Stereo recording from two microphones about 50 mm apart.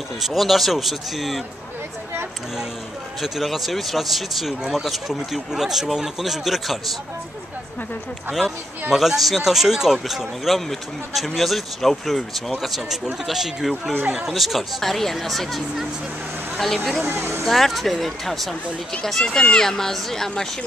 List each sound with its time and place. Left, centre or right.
0.2 s speech: centre
3.2 s speech: centre
8.3 s speech: centre
17.1 s speech: right
17.5 s speech: centre